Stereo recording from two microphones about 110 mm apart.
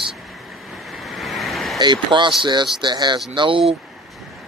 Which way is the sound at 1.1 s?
Centre (ahead or behind).